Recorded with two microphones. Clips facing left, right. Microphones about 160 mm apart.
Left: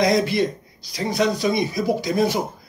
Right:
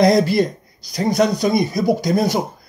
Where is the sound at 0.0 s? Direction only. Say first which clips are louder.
Right 4 dB; 35° right (ahead or behind).